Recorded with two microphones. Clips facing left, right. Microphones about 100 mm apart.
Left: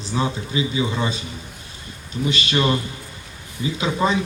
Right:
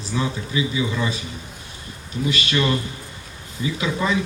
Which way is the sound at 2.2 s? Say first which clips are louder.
Left 1 dB; 25° left (ahead or behind).